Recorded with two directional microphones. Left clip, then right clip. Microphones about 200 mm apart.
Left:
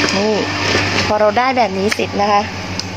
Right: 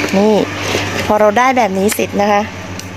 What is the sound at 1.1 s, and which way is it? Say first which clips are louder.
Speech: right 4 dB; 50° right (ahead or behind).